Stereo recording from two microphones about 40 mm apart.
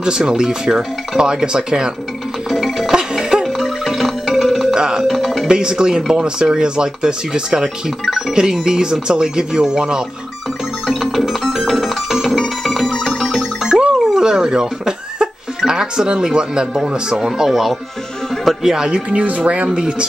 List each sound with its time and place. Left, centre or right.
0.0 s speech: centre
2.5 s music: centre
2.9 s music: centre
3.4 s music: centre
4.7 s music: centre
5.0 s music: centre
5.5 s speech: right
10.9 s music: centre
13.9 s speech: centre
17.5 s speech: centre
18.3 s music: centre
18.6 s speech: centre
18.9 s speech: right